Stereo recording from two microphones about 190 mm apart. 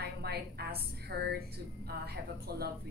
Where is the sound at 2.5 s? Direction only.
55° right (ahead or behind).